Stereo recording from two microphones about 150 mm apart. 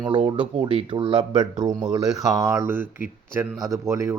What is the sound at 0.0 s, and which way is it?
Speech, 35° right (ahead or behind).